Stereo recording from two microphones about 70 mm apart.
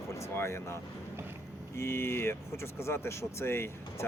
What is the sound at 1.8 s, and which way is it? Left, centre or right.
Speech, left.